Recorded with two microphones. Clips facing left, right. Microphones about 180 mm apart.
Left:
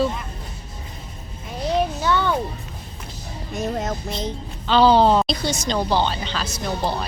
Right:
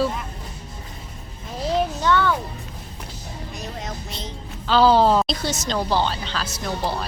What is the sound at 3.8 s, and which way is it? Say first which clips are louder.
Music: left 6 dB; 50° left (ahead or behind).